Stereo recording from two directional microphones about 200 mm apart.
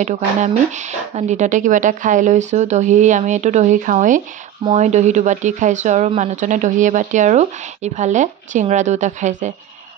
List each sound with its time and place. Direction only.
0.0 s speech: 35° right (ahead or behind)